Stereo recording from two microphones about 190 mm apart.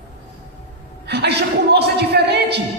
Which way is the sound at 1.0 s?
60° right (ahead or behind).